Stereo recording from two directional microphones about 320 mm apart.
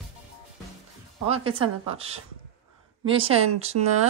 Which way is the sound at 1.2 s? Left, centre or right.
Centre.